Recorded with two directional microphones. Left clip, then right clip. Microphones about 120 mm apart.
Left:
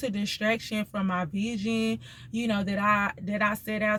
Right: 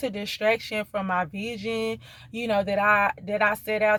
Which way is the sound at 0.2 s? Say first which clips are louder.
Right 5 dB; 15° left (ahead or behind).